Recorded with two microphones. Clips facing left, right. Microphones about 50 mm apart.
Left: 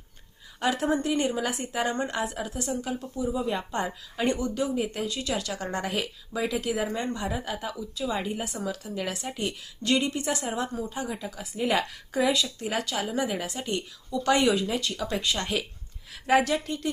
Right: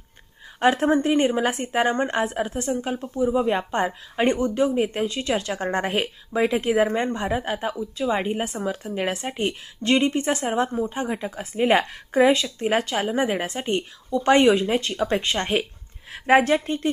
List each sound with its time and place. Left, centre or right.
0.6 s a woman's voice: right